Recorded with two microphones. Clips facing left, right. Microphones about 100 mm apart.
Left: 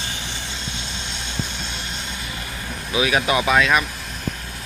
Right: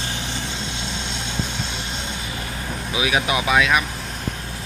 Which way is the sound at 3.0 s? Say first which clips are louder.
Left 2 dB; 10° right (ahead or behind).